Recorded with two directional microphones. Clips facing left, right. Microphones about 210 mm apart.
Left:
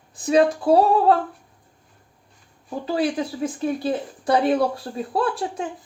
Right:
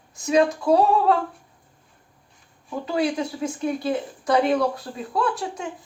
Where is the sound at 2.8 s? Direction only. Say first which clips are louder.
Left 1 dB; 30° left (ahead or behind).